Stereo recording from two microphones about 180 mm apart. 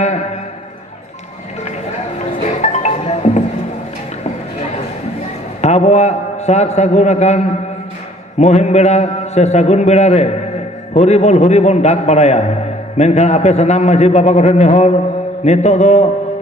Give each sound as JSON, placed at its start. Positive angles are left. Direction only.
{"t": 2.6, "sound": "music", "side_deg": 40}
{"t": 5.6, "sound": "a man's voice", "side_deg": 40}